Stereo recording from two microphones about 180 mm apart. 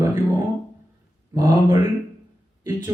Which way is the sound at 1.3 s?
20° right (ahead or behind).